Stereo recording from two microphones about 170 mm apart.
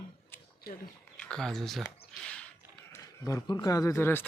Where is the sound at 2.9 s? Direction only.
20° left (ahead or behind).